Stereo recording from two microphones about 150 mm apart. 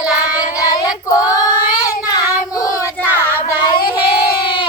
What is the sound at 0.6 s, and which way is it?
Child singing, 25° left (ahead or behind).